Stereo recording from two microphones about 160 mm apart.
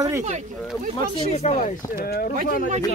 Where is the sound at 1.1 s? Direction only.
45° left (ahead or behind).